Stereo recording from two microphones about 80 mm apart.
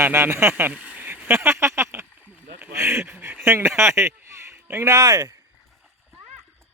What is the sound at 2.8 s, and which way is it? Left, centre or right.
Speech, right.